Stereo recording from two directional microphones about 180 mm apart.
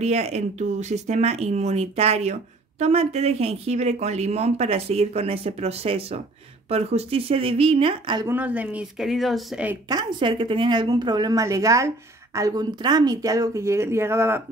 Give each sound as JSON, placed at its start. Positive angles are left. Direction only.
{"t": 0.0, "sound": "speech", "side_deg": -35}
{"t": 8.3, "sound": "speech", "side_deg": -10}
{"t": 9.8, "sound": "speech", "side_deg": -25}